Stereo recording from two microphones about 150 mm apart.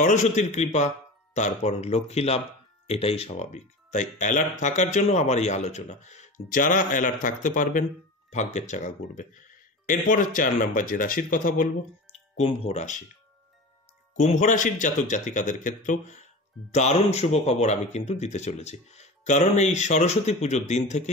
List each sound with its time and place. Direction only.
0.0 s speech: 55° left (ahead or behind)
12.1 s music: 40° left (ahead or behind)
14.1 s speech: 55° left (ahead or behind)
16.7 s speech: 50° left (ahead or behind)